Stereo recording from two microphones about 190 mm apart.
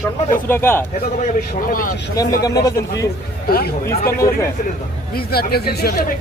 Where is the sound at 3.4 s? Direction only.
55° left (ahead or behind).